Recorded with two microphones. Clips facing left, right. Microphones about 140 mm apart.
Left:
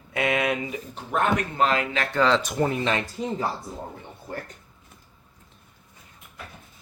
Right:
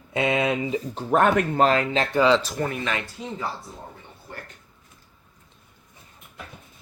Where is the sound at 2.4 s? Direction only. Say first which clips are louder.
Left 3 dB; 20° left (ahead or behind).